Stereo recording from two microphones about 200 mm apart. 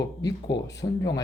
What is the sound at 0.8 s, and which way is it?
Speech, 30° left (ahead or behind).